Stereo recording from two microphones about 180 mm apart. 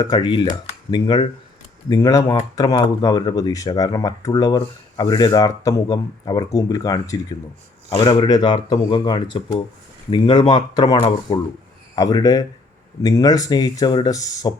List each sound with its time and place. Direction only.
0.0 s speech: 25° left (ahead or behind)